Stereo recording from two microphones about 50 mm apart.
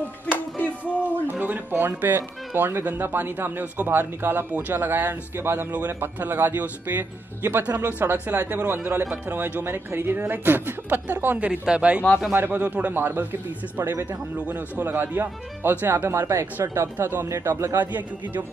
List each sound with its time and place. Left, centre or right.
0.6 s music: left
1.4 s speech: right
11.6 s speech: right
12.3 s speech: right
14.5 s speech: right
17.3 s a man's voice: right
17.7 s speech: right